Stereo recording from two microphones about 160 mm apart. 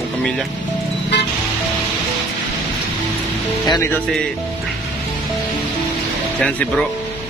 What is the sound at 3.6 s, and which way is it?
Speech, 25° left (ahead or behind).